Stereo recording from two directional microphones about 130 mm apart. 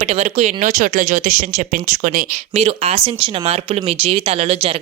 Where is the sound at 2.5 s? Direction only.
55° right (ahead or behind).